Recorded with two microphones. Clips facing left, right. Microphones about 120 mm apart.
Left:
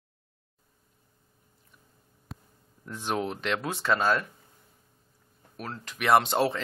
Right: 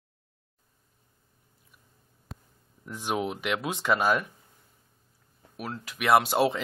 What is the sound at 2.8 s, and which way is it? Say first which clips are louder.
Speech: even; 10° right (ahead or behind).